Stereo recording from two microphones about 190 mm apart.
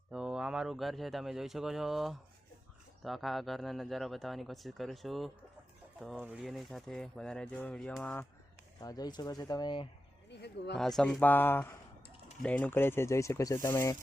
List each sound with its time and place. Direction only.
0.1 s speech: 5° right (ahead or behind)
8.8 s speech: 20° left (ahead or behind)
10.2 s speech: 65° left (ahead or behind)
10.8 s speech: centre (ahead or behind)